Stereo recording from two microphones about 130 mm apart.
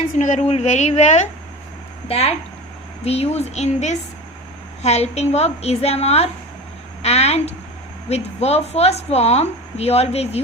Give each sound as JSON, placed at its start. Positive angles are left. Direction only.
{"t": 0.2, "sound": "a woman's voice", "side_deg": 60}
{"t": 2.0, "sound": "a woman's voice", "side_deg": 50}
{"t": 7.0, "sound": "a sound", "side_deg": 55}
{"t": 8.1, "sound": "speech", "side_deg": 55}